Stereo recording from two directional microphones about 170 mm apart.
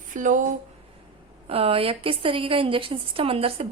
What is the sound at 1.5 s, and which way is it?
A woman's voice, 35° right (ahead or behind).